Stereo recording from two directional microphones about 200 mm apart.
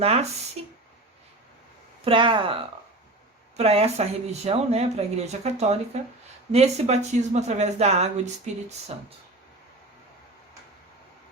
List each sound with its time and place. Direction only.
0.0 s speech: 30° right (ahead or behind)
2.0 s speech: 25° right (ahead or behind)
3.6 s speech: 30° right (ahead or behind)